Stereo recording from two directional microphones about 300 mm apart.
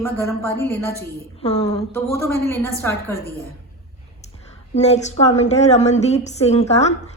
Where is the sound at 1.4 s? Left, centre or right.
Left.